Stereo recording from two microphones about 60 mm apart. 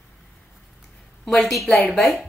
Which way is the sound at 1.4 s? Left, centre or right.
Centre.